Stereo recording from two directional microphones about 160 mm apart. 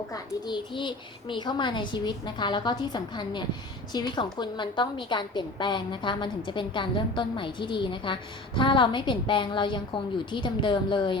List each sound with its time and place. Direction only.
0.1 s a woman's voice: 30° left (ahead or behind)